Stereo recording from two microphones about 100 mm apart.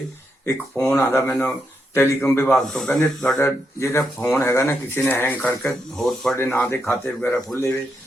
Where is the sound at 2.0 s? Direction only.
25° left (ahead or behind).